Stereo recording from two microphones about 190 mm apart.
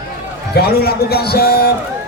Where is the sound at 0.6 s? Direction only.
55° left (ahead or behind).